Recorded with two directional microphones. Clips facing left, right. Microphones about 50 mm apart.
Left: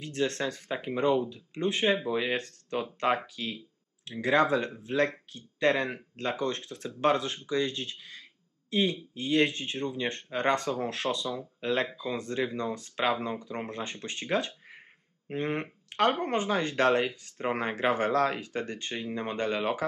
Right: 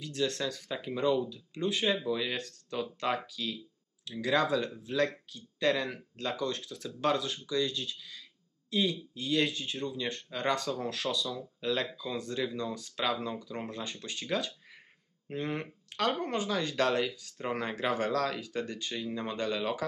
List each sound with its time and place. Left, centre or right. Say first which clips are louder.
0.0 s speech: left 2 dB; left